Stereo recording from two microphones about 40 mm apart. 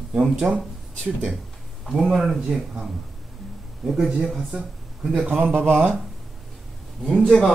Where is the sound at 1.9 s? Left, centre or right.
Centre.